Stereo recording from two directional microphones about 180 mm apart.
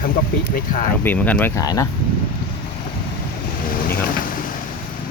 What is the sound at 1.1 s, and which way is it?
Speech, 10° left (ahead or behind).